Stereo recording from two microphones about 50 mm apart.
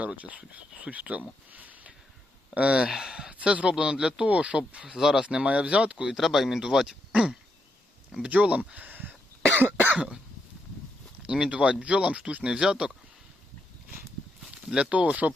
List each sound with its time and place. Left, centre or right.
0.0 s speech: right
1.5 s a sound: right
2.6 s speech: right
2.8 s speech: centre
3.3 s speech: right
4.3 s speech: right
6.1 s speech: centre
7.1 s throat clearing: centre
8.2 s speech: right
9.6 s cough: right
11.2 s speech: centre
14.5 s speech: right